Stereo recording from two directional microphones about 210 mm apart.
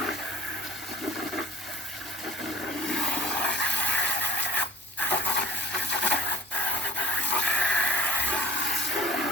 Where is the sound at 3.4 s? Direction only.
55° left (ahead or behind).